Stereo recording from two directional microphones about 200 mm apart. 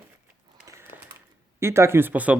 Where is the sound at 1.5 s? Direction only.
15° right (ahead or behind).